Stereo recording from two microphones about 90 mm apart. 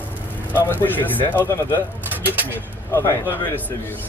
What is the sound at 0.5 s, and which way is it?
A man's voice, 25° left (ahead or behind).